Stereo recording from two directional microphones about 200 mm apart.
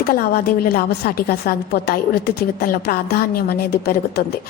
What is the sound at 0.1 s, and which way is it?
A woman's voice, 45° left (ahead or behind).